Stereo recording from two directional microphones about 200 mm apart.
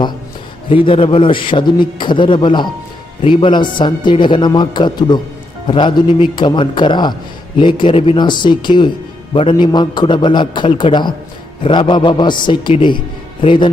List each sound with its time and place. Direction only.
0.9 s speech: 25° left (ahead or behind)